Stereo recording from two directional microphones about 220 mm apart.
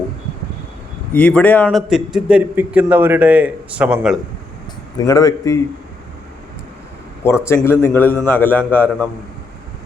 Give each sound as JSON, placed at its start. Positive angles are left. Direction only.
{"t": 1.1, "sound": "a man's voice", "side_deg": 5}
{"t": 4.9, "sound": "a man's voice", "side_deg": 15}
{"t": 7.4, "sound": "a man's voice", "side_deg": 10}